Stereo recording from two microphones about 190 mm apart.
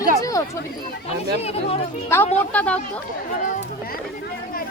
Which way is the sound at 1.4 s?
35° left (ahead or behind).